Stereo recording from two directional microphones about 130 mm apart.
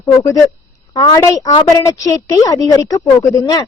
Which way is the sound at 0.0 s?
25° left (ahead or behind).